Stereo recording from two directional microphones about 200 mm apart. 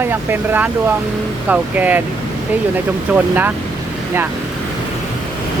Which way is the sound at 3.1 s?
10° right (ahead or behind).